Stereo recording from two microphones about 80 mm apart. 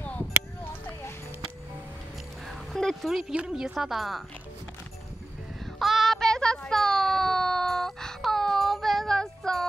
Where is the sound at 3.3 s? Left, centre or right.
Centre.